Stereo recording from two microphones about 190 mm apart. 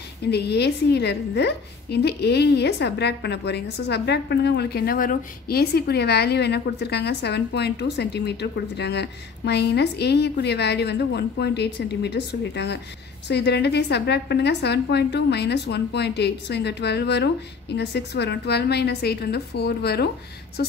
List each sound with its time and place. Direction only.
0.2 s a woman's voice: 60° left (ahead or behind)